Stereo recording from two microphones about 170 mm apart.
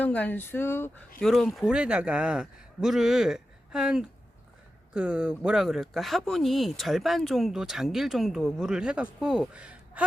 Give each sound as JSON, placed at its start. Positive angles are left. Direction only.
{"t": 0.0, "sound": "speech", "side_deg": 10}
{"t": 1.2, "sound": "speech", "side_deg": 0}